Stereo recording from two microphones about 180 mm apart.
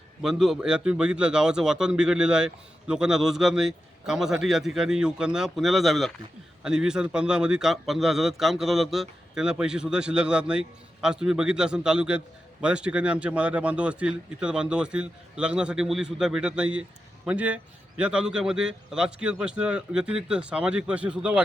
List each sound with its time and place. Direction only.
0.2 s a man's voice: 5° right (ahead or behind)